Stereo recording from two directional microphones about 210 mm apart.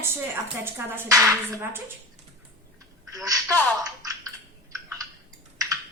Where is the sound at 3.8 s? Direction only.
15° right (ahead or behind).